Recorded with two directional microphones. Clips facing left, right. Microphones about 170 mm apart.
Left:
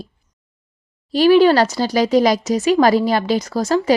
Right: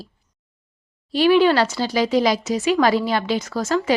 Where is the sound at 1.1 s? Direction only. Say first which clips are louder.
Left 4 dB; 40° left (ahead or behind).